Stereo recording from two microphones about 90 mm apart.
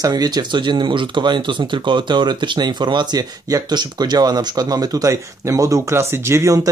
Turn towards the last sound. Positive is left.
turn(degrees=-35)  # may be behind; listen again after turning